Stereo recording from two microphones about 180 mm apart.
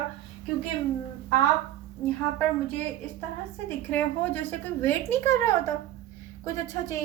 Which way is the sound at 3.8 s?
10° left (ahead or behind).